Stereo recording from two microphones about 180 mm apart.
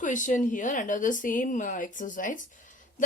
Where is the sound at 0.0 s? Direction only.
45° left (ahead or behind).